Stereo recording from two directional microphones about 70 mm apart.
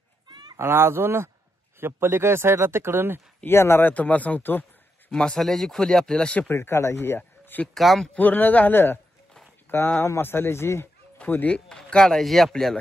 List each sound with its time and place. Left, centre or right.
0.3 s a sound: right
0.6 s speech: right
3.4 s speech: left
3.9 s speech: left
5.1 s speech: centre
6.5 s speech: left
7.2 s a sound: left
7.6 s speech: centre
8.1 s speech: left
10.0 s speech: left
11.1 s speech: left
11.5 s speech: centre